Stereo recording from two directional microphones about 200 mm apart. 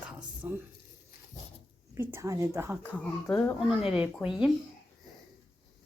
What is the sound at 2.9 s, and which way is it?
A woman's voice, 10° left (ahead or behind).